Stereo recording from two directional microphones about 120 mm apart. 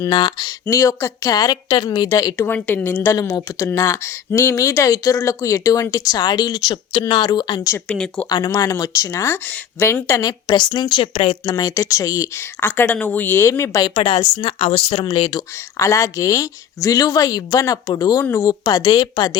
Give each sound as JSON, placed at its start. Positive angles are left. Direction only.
{"t": 0.1, "sound": "a woman's voice", "side_deg": 40}
{"t": 0.6, "sound": "speech", "side_deg": 25}
{"t": 2.5, "sound": "speech", "side_deg": 15}
{"t": 7.9, "sound": "speech", "side_deg": 5}
{"t": 8.3, "sound": "speech", "side_deg": 30}
{"t": 11.5, "sound": "speech", "side_deg": 30}
{"t": 13.9, "sound": "speech", "side_deg": 45}
{"t": 15.8, "sound": "speech", "side_deg": 25}
{"t": 18.6, "sound": "a woman's voice", "side_deg": 35}